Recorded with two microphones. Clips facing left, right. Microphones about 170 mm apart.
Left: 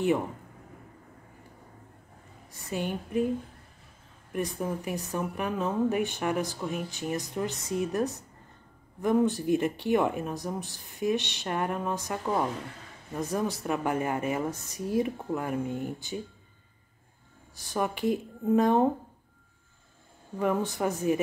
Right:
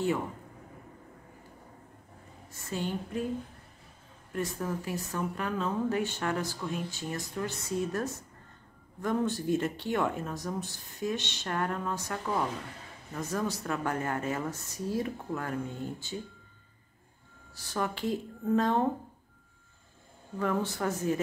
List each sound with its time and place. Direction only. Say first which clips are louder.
2.7 s speech: left 3 dB; 15° left (ahead or behind)
4.3 s speech: left 2 dB; 15° left (ahead or behind)
17.6 s speech: left 3 dB; 15° left (ahead or behind)
20.3 s speech: left 3 dB; 15° left (ahead or behind)